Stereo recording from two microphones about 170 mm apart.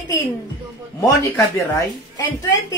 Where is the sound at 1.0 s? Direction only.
20° left (ahead or behind).